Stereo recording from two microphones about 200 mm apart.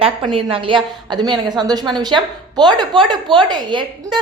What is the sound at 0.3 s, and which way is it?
A woman's voice, 25° right (ahead or behind).